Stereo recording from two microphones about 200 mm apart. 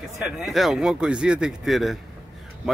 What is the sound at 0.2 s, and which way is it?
Speech, centre (ahead or behind).